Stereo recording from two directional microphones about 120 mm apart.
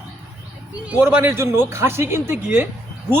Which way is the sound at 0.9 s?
10° right (ahead or behind).